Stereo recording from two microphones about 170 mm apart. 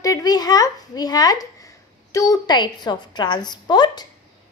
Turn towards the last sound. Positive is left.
turn(degrees=25)  # may be behind; listen again after turning